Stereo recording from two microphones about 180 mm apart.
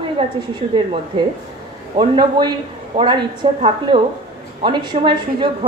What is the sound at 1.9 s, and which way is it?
A woman's voice, 25° right (ahead or behind).